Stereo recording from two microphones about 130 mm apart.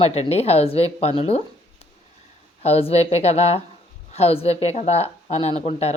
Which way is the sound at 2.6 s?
50° left (ahead or behind).